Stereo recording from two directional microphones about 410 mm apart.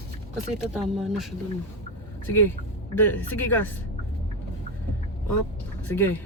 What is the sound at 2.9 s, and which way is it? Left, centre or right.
Speech, centre.